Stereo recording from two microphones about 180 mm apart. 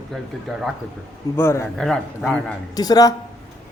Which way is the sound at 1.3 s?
15° left (ahead or behind).